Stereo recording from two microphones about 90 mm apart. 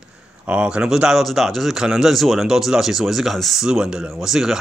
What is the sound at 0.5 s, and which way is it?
Speech, 10° right (ahead or behind).